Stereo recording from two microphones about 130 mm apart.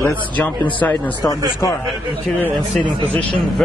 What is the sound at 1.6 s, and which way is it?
Speech, 25° left (ahead or behind).